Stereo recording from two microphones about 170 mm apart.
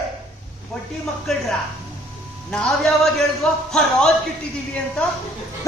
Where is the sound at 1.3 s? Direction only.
Centre (ahead or behind).